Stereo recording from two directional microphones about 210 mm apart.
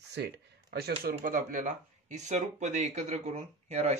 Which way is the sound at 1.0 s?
40° right (ahead or behind).